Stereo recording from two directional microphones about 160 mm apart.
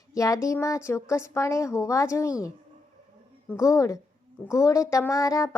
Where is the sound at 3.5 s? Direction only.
20° left (ahead or behind).